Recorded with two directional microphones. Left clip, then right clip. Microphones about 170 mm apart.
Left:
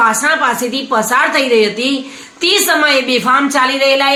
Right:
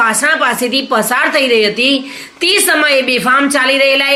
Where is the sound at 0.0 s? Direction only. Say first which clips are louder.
Even; 10° right (ahead or behind).